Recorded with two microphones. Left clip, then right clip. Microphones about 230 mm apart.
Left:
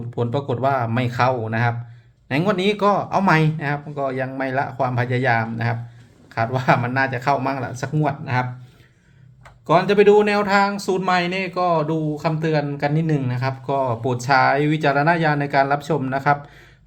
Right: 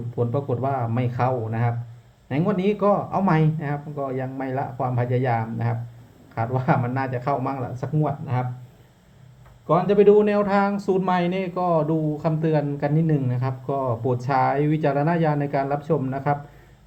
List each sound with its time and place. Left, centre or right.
0.2 s speech: left
9.6 s speech: left